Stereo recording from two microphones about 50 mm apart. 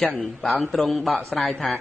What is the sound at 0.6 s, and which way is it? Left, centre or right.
Speech, centre.